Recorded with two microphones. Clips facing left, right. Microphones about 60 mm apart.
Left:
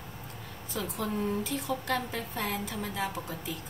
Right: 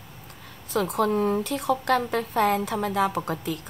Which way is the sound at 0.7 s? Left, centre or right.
Right.